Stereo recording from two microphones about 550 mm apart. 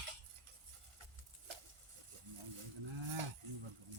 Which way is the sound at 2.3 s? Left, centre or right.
Right.